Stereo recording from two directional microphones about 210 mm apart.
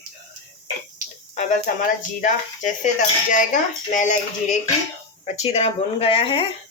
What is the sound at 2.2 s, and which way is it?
A woman's voice, 35° left (ahead or behind).